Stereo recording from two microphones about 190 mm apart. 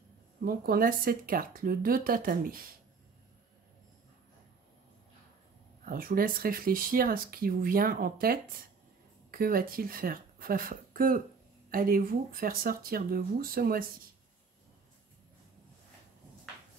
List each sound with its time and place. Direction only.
0.4 s speech: 50° right (ahead or behind)
5.9 s speech: 50° right (ahead or behind)